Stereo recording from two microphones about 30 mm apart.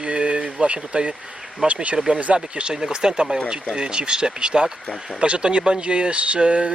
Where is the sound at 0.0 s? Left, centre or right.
Right.